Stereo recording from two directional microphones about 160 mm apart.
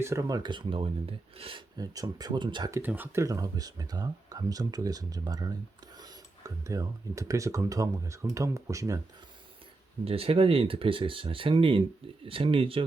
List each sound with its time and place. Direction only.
0.0 s speech: 20° right (ahead or behind)
10.0 s speech: 35° right (ahead or behind)